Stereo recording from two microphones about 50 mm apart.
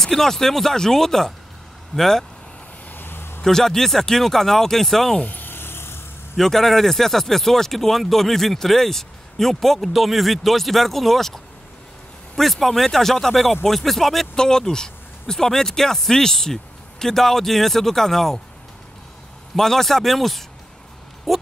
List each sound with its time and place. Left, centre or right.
0.0 s speech: centre
2.9 s a sound: left
3.4 s speech: centre
5.2 s a sound: left
6.3 s speech: centre
19.5 s speech: centre
21.3 s oink: centre